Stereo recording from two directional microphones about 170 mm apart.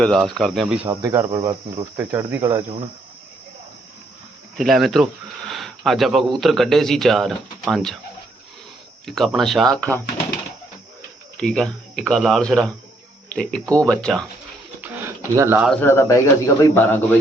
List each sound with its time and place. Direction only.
0.0 s a man's voice: centre (ahead or behind)
0.9 s speech: 15° right (ahead or behind)
1.4 s cricket: 20° right (ahead or behind)
4.5 s a man's voice: centre (ahead or behind)
9.0 s a man's voice: centre (ahead or behind)
11.3 s a man's voice: 5° left (ahead or behind)
14.8 s a sound: 10° right (ahead or behind)
15.8 s a man's voice: 15° left (ahead or behind)